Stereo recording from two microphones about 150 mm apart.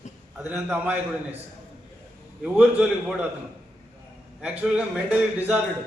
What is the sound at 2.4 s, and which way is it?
Speech, 5° right (ahead or behind).